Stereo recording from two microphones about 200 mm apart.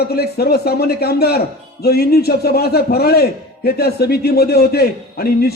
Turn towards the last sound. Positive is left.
turn(degrees=50)  # may be behind; listen again after turning